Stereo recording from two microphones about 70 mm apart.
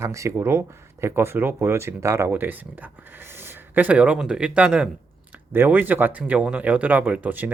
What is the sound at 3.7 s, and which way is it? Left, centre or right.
Speech, right.